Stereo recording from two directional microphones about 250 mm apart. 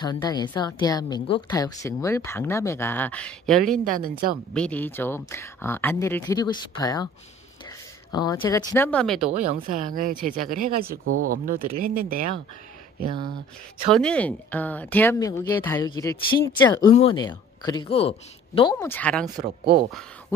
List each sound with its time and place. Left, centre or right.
0.0 s a woman's voice: centre
3.8 s speech: right
4.6 s a woman's voice: centre
8.1 s a woman's voice: centre
9.3 s speech: right
13.8 s a woman's voice: centre
19.4 s speech: right
19.9 s speech: centre